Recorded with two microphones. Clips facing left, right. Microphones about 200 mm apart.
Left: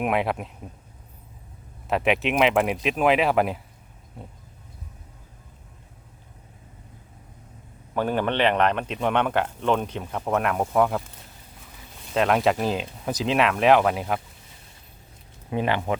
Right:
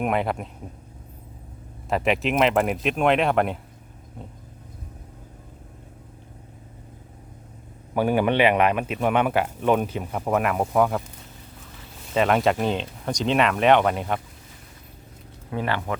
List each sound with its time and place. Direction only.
0.0 s speech: centre (ahead or behind)
1.9 s speech: centre (ahead or behind)
7.9 s speech: 10° right (ahead or behind)
12.1 s speech: centre (ahead or behind)
15.4 s speech: 20° left (ahead or behind)